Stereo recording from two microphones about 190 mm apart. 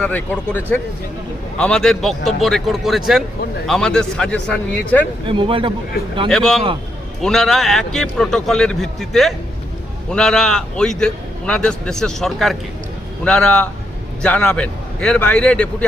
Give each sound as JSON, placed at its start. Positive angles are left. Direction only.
{"t": 0.0, "sound": "a man's voice", "side_deg": 10}
{"t": 5.2, "sound": "speech", "side_deg": -25}
{"t": 6.2, "sound": "a man's voice", "side_deg": 0}